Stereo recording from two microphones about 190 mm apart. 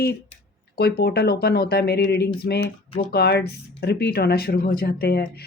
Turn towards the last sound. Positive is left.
turn(degrees=55)  # may be behind; listen again after turning